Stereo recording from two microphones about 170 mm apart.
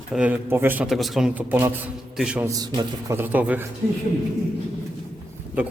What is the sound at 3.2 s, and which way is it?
Speech, 10° right (ahead or behind).